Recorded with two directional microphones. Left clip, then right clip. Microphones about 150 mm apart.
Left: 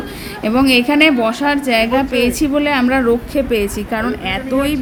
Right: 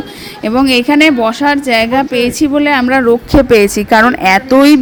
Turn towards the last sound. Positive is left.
turn(degrees=-50)  # may be behind; listen again after turning